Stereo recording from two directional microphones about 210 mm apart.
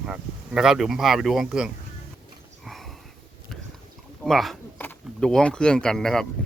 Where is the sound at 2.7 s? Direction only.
Centre (ahead or behind).